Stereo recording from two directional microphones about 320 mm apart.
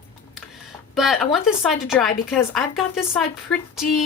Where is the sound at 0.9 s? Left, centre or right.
Centre.